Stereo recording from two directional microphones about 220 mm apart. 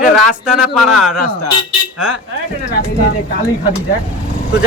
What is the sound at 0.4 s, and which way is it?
Speech, 5° right (ahead or behind).